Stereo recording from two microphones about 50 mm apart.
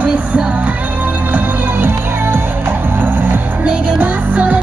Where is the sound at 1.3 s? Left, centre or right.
Right.